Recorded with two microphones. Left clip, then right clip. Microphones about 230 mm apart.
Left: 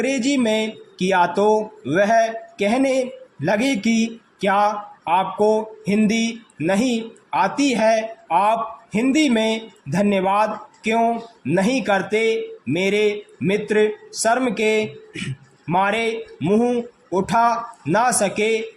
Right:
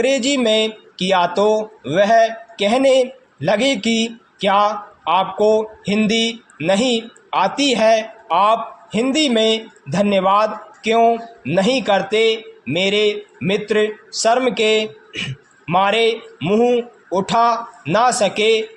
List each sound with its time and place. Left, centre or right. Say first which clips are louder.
0.0 s speech: right 4 dB; centre